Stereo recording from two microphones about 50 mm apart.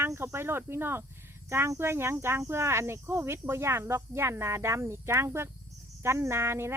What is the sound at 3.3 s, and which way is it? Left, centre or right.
Speech, right.